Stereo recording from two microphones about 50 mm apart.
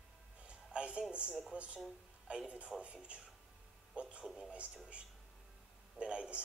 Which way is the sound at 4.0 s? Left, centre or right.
Right.